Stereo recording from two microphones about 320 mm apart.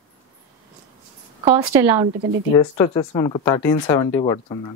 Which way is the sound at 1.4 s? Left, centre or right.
Centre.